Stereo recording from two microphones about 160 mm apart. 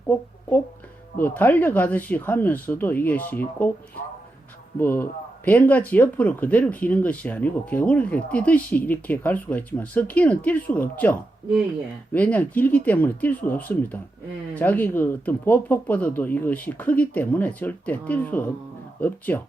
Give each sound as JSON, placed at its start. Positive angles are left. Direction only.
{"t": 1.2, "sound": "speech", "side_deg": 10}
{"t": 4.8, "sound": "speech", "side_deg": 10}